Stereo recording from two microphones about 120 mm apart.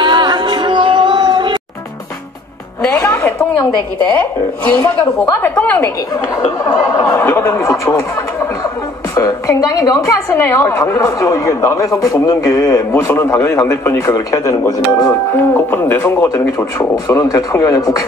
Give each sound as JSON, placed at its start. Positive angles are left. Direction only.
{"t": 0.0, "sound": "music", "side_deg": -40}
{"t": 3.0, "sound": "a sound", "side_deg": 20}
{"t": 4.1, "sound": "a woman's voice", "side_deg": 15}
{"t": 6.4, "sound": "a woman's voice", "side_deg": 25}
{"t": 15.3, "sound": "a woman's voice", "side_deg": 20}
{"t": 16.5, "sound": "a woman's voice", "side_deg": 30}